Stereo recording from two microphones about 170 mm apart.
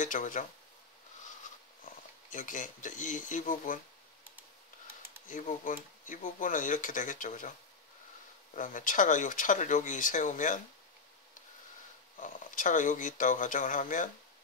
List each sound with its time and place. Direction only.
0.0 s speech: 50° left (ahead or behind)
2.3 s speech: 50° left (ahead or behind)
5.3 s speech: 50° left (ahead or behind)
8.5 s speech: 50° left (ahead or behind)
12.2 s speech: 50° left (ahead or behind)